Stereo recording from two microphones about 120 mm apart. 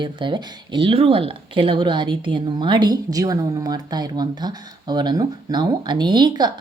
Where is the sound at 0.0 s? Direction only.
40° right (ahead or behind).